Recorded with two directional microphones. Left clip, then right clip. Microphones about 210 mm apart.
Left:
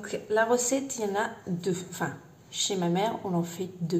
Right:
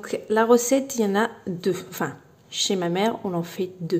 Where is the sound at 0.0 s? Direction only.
45° right (ahead or behind).